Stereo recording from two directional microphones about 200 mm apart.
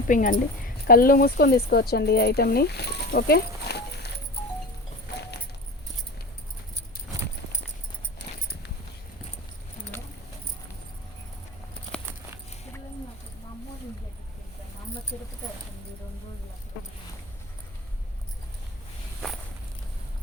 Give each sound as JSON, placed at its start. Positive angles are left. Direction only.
{"t": 0.1, "sound": "a woman's voice", "side_deg": 40}
{"t": 8.2, "sound": "keys jangling", "side_deg": 55}